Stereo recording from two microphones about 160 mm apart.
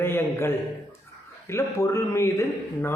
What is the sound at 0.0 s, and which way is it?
A man's voice, 15° left (ahead or behind).